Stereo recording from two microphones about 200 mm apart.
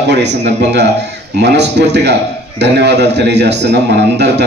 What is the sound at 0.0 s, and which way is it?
A man's voice, 60° right (ahead or behind).